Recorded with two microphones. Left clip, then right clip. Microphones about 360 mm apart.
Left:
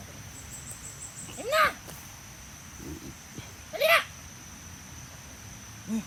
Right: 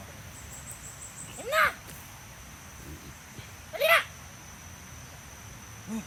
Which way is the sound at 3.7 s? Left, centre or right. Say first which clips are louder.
Even; centre.